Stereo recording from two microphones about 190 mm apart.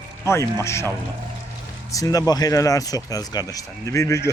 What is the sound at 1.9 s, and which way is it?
Speech, 20° left (ahead or behind).